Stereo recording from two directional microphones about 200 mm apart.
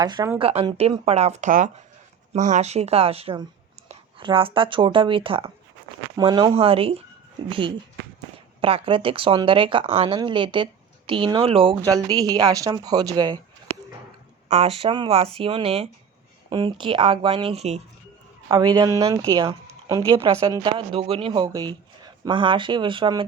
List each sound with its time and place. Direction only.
0.0 s speech: 20° right (ahead or behind)
8.6 s speech: 25° right (ahead or behind)
14.5 s speech: 30° right (ahead or behind)
18.8 s speech: 15° right (ahead or behind)